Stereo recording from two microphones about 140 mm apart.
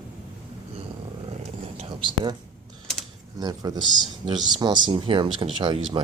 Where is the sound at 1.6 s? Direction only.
40° right (ahead or behind).